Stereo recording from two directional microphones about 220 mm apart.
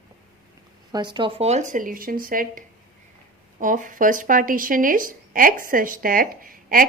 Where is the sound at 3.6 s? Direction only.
35° right (ahead or behind).